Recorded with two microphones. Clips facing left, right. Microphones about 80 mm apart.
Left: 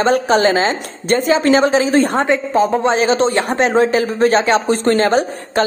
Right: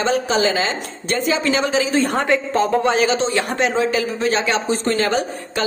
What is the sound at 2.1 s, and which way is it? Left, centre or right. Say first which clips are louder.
A man's voice: left 3 dB; left.